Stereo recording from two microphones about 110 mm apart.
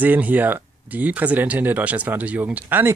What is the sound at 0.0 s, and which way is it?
Speech, 15° right (ahead or behind).